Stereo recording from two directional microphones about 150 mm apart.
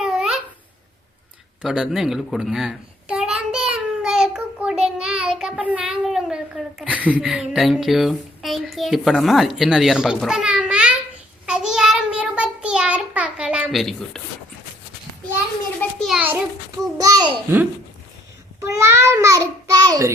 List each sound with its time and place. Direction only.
0.0 s babbling: 5° right (ahead or behind)
1.6 s a child's voice: 5° right (ahead or behind)
11.4 s child singing: 5° right (ahead or behind)
15.8 s children playing: centre (ahead or behind)
17.0 s a sound: 25° right (ahead or behind)
17.5 s speech: 15° right (ahead or behind)
18.6 s a sound: 20° right (ahead or behind)
19.9 s a child's voice: 20° right (ahead or behind)